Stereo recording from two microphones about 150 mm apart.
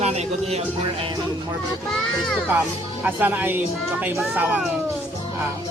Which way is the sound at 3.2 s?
10° right (ahead or behind).